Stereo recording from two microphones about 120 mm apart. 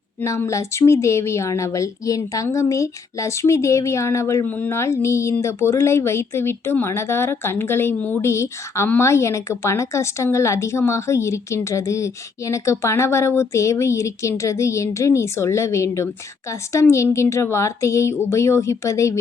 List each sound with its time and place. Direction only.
0.2 s speech: 20° left (ahead or behind)